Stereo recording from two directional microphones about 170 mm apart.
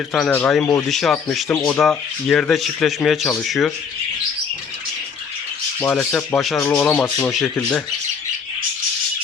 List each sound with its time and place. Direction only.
0.1 s speech: 5° left (ahead or behind)
1.5 s speech: 15° left (ahead or behind)
1.8 s speech: 5° left (ahead or behind)
5.8 s speech: 15° left (ahead or behind)